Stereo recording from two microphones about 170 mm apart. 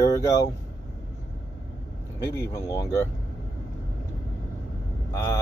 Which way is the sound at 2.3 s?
20° left (ahead or behind).